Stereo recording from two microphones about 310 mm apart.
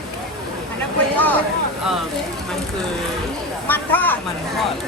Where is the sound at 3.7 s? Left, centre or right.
Centre.